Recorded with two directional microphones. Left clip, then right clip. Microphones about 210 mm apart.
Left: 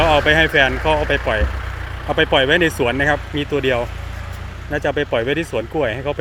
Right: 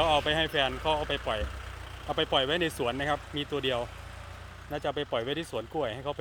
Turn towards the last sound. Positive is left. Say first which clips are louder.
# left 12 dB
turn(degrees=-20)  # may be behind; listen again after turning